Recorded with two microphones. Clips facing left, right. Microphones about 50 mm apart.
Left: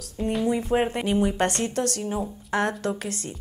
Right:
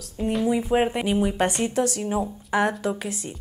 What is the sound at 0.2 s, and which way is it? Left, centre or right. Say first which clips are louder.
A woman's voice: right 1 dB; centre.